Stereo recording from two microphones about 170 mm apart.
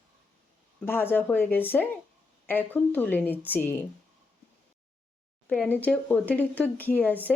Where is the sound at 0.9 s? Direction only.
10° left (ahead or behind).